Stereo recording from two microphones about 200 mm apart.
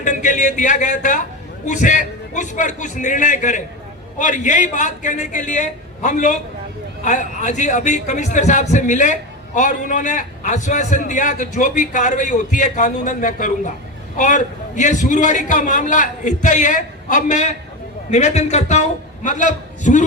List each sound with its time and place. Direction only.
0.0 s a man's voice: 40° left (ahead or behind)